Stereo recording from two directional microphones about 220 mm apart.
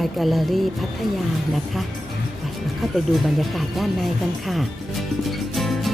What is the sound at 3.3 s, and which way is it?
A woman's voice, centre (ahead or behind).